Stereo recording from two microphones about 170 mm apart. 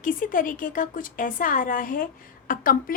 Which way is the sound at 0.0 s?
50° left (ahead or behind).